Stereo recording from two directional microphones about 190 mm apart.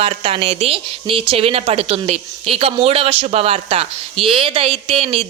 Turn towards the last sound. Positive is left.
turn(degrees=-30)  # may be behind; listen again after turning